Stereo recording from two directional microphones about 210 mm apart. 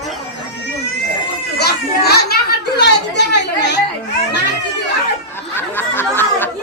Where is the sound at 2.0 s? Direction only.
50° left (ahead or behind).